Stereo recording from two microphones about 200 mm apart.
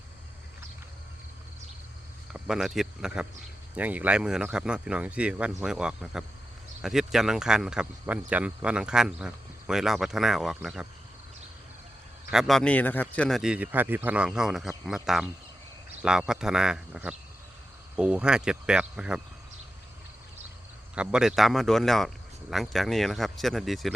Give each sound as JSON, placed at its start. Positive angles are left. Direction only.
{"t": 2.3, "sound": "speech", "side_deg": -5}
{"t": 12.3, "sound": "speech", "side_deg": 0}
{"t": 20.9, "sound": "speech", "side_deg": -5}